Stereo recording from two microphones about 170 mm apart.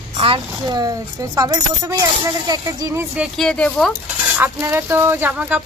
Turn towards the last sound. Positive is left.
turn(degrees=-10)  # may be behind; listen again after turning